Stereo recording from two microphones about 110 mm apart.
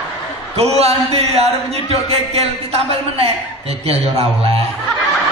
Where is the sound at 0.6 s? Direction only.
70° right (ahead or behind).